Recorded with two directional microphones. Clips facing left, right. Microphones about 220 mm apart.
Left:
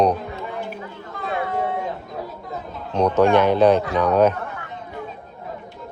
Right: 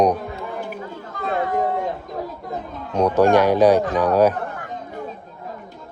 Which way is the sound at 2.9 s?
10° right (ahead or behind).